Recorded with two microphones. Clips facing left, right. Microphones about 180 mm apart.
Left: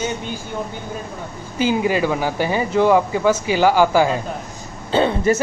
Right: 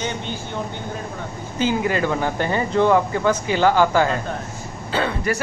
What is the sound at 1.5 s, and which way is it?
Speech, 15° left (ahead or behind).